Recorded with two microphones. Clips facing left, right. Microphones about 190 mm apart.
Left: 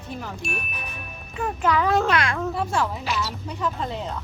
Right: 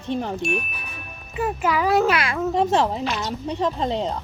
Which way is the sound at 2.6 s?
40° right (ahead or behind).